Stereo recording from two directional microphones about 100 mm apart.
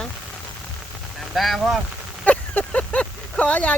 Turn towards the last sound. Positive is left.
turn(degrees=15)  # may be behind; listen again after turning